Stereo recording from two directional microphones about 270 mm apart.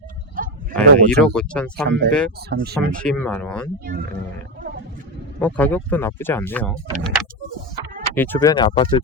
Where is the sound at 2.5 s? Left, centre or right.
Right.